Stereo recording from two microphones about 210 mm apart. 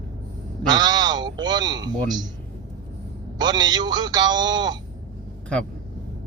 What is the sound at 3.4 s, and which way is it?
A man's voice, 20° right (ahead or behind).